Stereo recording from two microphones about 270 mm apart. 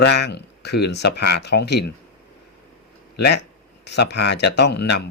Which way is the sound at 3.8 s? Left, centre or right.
Left.